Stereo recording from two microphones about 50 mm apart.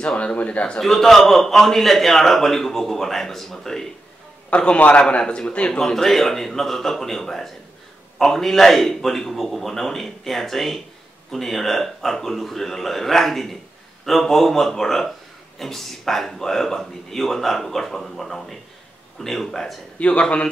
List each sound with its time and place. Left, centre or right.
0.0 s a man's voice: left
0.7 s a man's voice: centre
4.5 s a man's voice: left
5.7 s a man's voice: centre
20.0 s a man's voice: left